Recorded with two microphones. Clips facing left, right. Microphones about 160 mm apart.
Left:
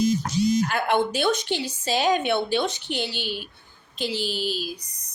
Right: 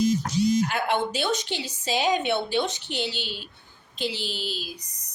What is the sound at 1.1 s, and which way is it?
Speech, 55° left (ahead or behind).